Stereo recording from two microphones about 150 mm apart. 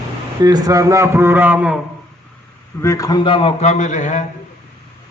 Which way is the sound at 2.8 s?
20° left (ahead or behind).